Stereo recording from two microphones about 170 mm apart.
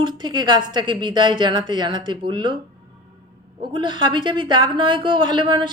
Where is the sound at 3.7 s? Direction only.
25° right (ahead or behind).